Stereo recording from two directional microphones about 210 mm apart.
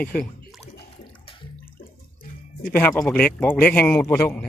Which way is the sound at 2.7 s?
5° left (ahead or behind).